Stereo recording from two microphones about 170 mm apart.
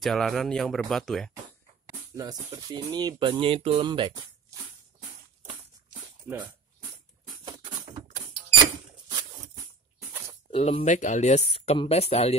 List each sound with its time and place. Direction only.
0.0 s speech: centre (ahead or behind)
1.9 s music: 20° right (ahead or behind)
2.5 s speech: 25° right (ahead or behind)
10.5 s speech: 35° left (ahead or behind)